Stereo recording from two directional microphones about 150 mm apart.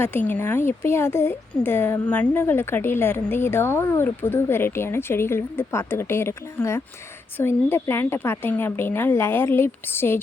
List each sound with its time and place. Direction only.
0.0 s speech: 15° left (ahead or behind)